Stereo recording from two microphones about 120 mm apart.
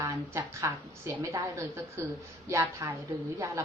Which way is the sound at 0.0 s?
25° right (ahead or behind).